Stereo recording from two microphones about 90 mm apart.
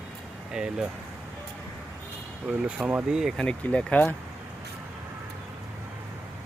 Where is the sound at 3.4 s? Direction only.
10° left (ahead or behind).